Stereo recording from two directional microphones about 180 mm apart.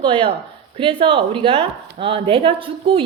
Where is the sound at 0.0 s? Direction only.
30° right (ahead or behind).